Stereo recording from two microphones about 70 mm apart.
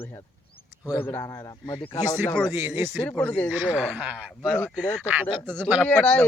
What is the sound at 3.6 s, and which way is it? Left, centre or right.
Speech, centre.